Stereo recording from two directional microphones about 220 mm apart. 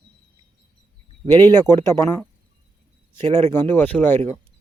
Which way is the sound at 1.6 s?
10° left (ahead or behind).